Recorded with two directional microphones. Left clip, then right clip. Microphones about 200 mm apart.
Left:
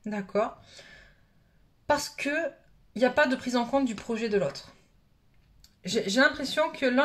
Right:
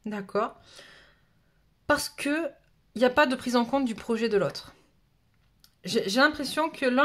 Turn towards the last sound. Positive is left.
turn(degrees=-35)  # may be behind; listen again after turning